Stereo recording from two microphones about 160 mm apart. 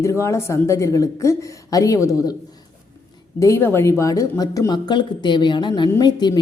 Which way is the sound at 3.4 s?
15° left (ahead or behind).